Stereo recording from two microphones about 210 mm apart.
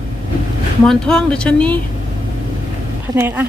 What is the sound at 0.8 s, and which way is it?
Speech, centre (ahead or behind).